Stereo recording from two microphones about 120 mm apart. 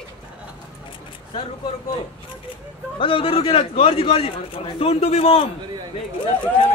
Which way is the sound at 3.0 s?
45° left (ahead or behind).